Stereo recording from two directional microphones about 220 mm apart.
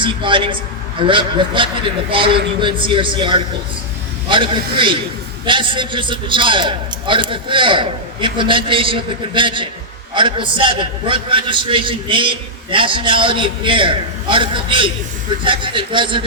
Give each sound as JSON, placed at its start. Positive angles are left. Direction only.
{"t": 0.0, "sound": "a man's voice", "side_deg": -20}